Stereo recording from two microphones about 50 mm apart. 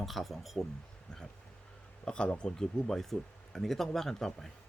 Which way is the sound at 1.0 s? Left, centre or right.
Centre.